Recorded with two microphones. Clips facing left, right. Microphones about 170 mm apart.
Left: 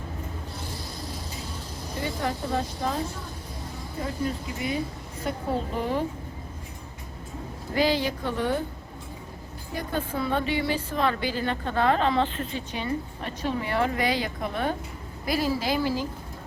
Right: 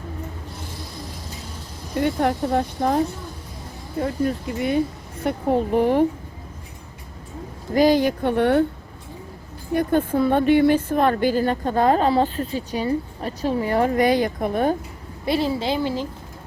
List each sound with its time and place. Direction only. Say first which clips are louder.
2.0 s a woman's voice: right 9 dB; 60° right (ahead or behind)
4.0 s a woman's voice: right 7 dB; 55° right (ahead or behind)
7.7 s a woman's voice: right 8 dB; 45° right (ahead or behind); by 8.6 s 65° right (ahead or behind)
9.7 s a woman's voice: right 10 dB; 50° right (ahead or behind)
15.3 s a woman's voice: right 4 dB; 25° right (ahead or behind)